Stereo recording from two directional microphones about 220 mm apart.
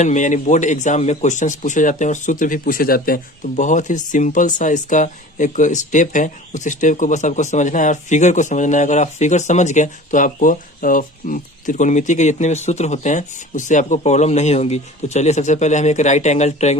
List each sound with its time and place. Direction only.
0.0 s speech: 35° left (ahead or behind)